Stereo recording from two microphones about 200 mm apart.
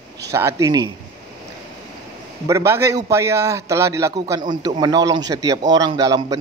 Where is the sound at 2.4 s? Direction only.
15° right (ahead or behind).